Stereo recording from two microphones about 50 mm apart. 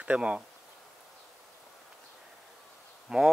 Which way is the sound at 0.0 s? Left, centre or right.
Right.